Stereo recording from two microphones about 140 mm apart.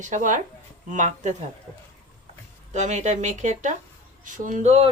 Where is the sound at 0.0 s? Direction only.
65° right (ahead or behind).